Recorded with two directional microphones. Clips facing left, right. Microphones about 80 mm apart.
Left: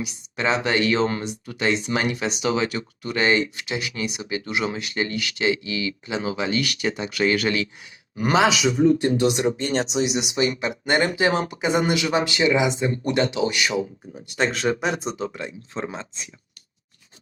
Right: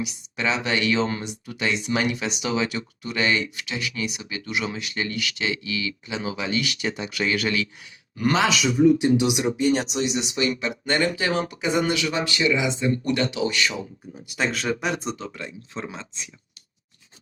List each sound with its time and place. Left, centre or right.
0.0 s speech: left
8.2 s speech: centre
9.1 s speech: centre
10.0 s speech: centre
10.3 s speech: left
14.3 s speech: centre
15.3 s speech: left
15.7 s speech: left